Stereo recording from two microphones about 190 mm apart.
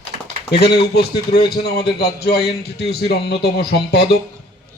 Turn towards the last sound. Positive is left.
turn(degrees=60)  # may be behind; listen again after turning